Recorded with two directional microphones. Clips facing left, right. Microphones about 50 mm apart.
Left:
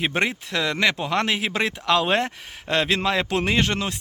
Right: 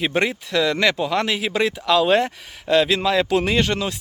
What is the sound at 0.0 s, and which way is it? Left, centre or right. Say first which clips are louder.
Speech: right 2 dB; left.